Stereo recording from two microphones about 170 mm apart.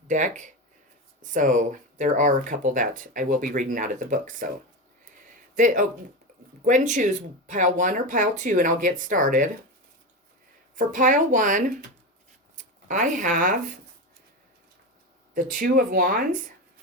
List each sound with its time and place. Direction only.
0.1 s speech: 45° right (ahead or behind)
5.5 s speech: 50° right (ahead or behind)
10.8 s speech: 50° right (ahead or behind)
15.4 s speech: 55° right (ahead or behind)